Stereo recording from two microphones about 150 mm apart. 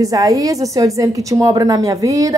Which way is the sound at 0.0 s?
25° right (ahead or behind).